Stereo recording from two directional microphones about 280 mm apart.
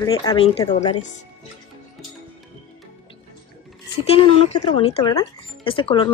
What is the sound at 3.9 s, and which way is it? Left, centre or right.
A woman's voice, centre.